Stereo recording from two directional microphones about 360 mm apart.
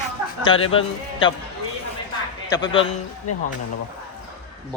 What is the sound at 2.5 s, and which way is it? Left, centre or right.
Speech, centre.